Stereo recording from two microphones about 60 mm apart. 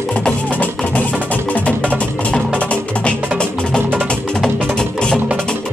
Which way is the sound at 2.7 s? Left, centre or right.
Centre.